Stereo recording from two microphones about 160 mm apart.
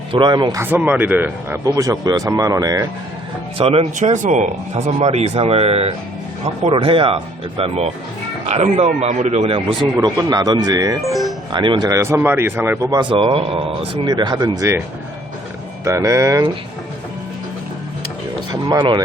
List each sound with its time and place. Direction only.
0.1 s speech: 30° right (ahead or behind)
0.6 s speech: 10° right (ahead or behind)
3.7 s speech: 40° right (ahead or behind)
10.0 s speech: 25° right (ahead or behind)
11.0 s speech: centre (ahead or behind)
11.5 s speech: 30° right (ahead or behind)
15.8 s speech: 20° right (ahead or behind)
18.5 s speech: 25° right (ahead or behind)